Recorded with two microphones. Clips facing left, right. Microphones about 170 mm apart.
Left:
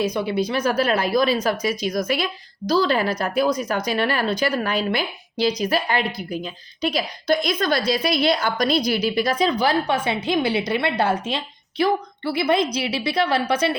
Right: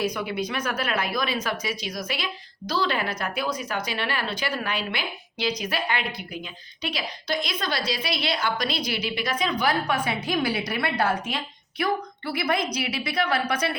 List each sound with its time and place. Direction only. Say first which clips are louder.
0.0 s a woman's voice: left 5 dB; 25° left (ahead or behind)